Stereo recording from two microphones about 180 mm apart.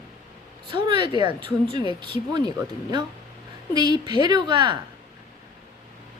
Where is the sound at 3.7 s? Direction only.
25° right (ahead or behind).